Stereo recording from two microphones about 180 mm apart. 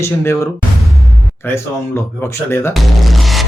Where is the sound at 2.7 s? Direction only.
Centre (ahead or behind).